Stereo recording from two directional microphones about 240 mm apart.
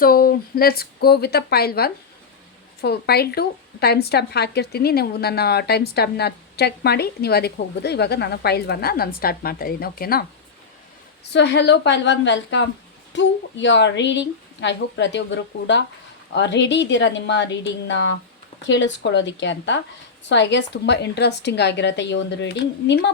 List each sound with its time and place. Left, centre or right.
0.0 s a woman's voice: left
11.3 s a woman's voice: left